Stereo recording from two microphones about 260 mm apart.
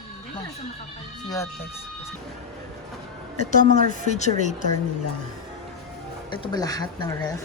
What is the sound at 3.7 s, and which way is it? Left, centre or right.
Speech, left.